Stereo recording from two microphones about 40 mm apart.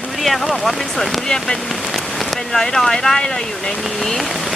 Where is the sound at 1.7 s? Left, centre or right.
Centre.